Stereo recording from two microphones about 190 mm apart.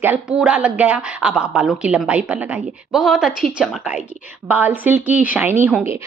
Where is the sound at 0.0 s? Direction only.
10° right (ahead or behind).